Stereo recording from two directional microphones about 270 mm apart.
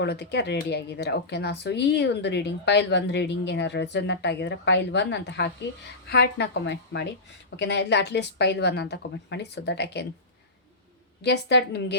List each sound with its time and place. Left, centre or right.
0.0 s speech: left
11.2 s speech: left